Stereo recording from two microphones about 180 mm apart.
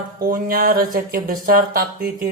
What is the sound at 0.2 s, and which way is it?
Speech, 55° right (ahead or behind).